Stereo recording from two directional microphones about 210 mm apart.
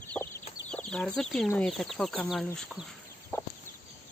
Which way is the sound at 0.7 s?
5° left (ahead or behind).